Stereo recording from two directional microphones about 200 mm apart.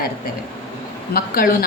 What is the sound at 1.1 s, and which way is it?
Speech, 45° left (ahead or behind).